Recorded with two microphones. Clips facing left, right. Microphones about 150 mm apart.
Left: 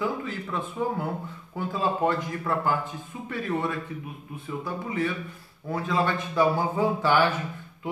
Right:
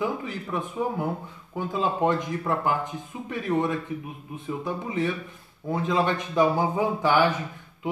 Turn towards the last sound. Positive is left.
turn(degrees=-15)  # may be behind; listen again after turning